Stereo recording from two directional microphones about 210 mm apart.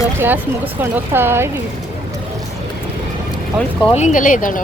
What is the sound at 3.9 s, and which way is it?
Speech, 35° left (ahead or behind).